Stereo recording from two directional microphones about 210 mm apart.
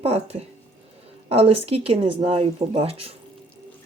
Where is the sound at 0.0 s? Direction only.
30° right (ahead or behind).